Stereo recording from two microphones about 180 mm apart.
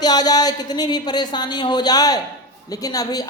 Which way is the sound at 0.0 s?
20° left (ahead or behind).